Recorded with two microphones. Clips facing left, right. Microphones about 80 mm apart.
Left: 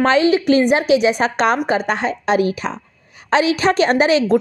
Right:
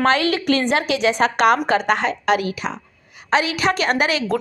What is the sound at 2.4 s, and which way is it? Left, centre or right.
A woman's voice, left.